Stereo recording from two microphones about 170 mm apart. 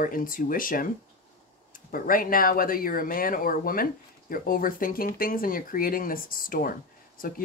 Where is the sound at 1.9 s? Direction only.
55° left (ahead or behind).